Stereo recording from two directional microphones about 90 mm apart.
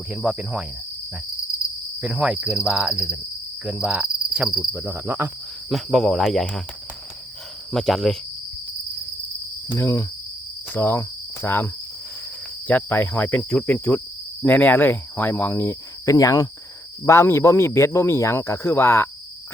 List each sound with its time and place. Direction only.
0.1 s cricket: 10° right (ahead or behind)
2.0 s cricket: 10° right (ahead or behind)
3.6 s insect: 10° right (ahead or behind)
4.7 s cricket: 25° right (ahead or behind)
5.6 s speech: centre (ahead or behind)
7.7 s speech: 5° left (ahead or behind)
9.7 s cricket: 25° left (ahead or behind); by 16.5 s 40° left (ahead or behind)
17.1 s cricket: 30° left (ahead or behind)